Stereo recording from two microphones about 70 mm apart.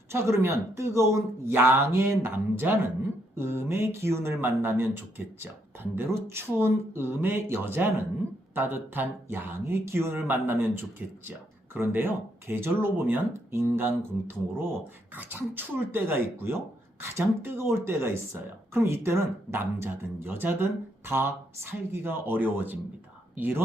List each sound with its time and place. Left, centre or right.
0.1 s speech: right